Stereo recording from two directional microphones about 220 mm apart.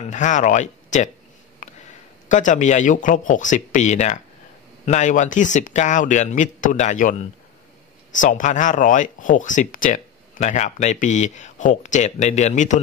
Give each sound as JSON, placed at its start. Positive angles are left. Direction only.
{"t": 0.1, "sound": "speech", "side_deg": 35}
{"t": 1.6, "sound": "a sound", "side_deg": 35}
{"t": 2.2, "sound": "speech", "side_deg": 35}